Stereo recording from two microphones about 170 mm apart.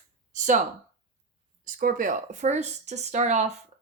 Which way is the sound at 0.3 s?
45° right (ahead or behind).